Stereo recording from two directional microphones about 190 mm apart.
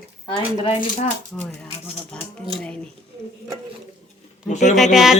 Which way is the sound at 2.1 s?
5° left (ahead or behind).